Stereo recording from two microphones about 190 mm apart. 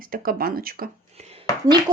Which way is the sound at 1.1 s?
30° right (ahead or behind).